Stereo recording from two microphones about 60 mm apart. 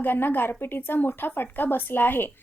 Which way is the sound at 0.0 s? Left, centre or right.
Left.